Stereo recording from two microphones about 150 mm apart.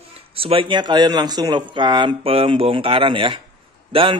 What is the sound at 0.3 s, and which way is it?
Speech, 40° right (ahead or behind).